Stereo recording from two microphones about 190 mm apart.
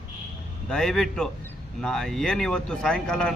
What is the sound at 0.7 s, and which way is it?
A man's voice, centre (ahead or behind).